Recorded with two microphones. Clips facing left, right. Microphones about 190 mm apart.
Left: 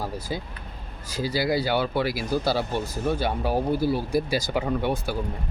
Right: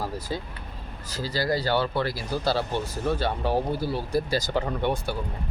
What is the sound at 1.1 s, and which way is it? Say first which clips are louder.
Speech: left 2 dB; 10° left (ahead or behind).